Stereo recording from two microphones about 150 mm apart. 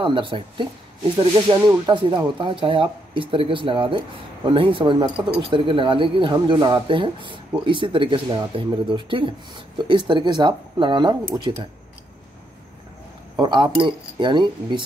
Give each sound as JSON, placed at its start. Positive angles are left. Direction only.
{"t": 0.0, "sound": "speech", "side_deg": -35}
{"t": 13.4, "sound": "speech", "side_deg": -35}